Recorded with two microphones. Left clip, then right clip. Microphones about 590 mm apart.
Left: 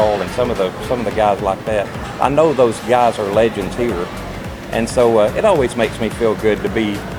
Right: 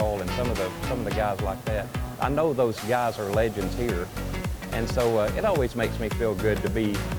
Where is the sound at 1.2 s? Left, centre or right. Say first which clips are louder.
Left 13 dB; right.